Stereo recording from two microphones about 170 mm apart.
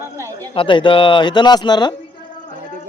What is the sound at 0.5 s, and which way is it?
Speech, 30° left (ahead or behind).